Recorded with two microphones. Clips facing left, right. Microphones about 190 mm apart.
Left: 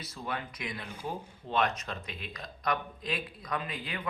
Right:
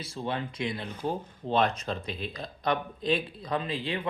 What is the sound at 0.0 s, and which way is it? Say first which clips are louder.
Speech: right 5 dB; 30° right (ahead or behind).